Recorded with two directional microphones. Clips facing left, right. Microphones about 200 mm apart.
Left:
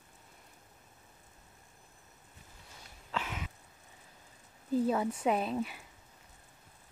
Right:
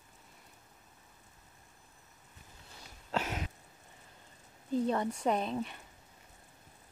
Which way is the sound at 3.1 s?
40° right (ahead or behind).